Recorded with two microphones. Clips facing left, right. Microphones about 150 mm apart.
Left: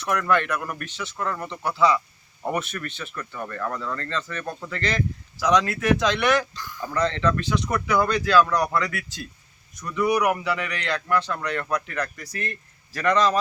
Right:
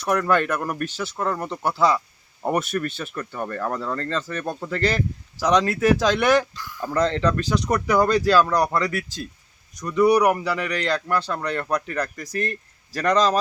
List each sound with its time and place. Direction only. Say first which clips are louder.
0.0 s speech: right 2 dB; 40° right (ahead or behind)